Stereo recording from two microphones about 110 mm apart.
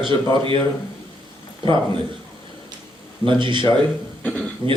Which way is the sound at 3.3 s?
45° right (ahead or behind).